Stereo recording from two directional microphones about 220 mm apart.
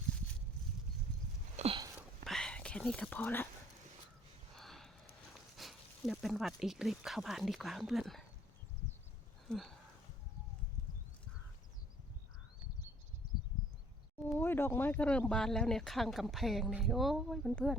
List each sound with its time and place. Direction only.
1.5 s a sound: 25° right (ahead or behind)
2.0 s whispering: centre (ahead or behind)
4.5 s a sound: centre (ahead or behind)
5.3 s speech: centre (ahead or behind)
9.5 s speech: centre (ahead or behind)
14.2 s speech: 10° left (ahead or behind)